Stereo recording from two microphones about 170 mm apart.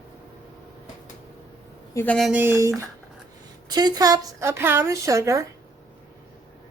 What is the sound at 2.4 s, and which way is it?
A woman's voice, 15° right (ahead or behind).